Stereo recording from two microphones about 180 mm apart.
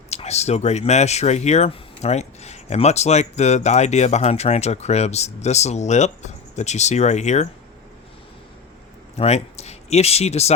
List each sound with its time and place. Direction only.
0.1 s speech: 35° left (ahead or behind)
9.1 s speech: 35° left (ahead or behind)